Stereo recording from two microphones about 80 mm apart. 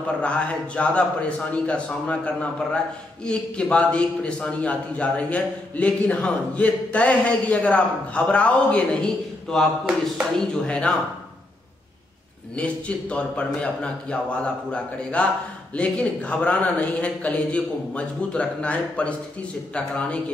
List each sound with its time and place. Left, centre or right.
0.2 s a man's voice: centre
12.5 s a man's voice: centre